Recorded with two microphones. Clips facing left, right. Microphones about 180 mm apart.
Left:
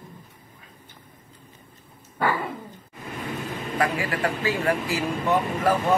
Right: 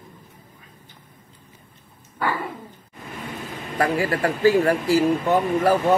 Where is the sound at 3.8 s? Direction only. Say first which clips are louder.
Right 4 dB; 35° right (ahead or behind).